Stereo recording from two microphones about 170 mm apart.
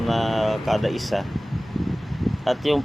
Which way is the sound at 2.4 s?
Centre (ahead or behind).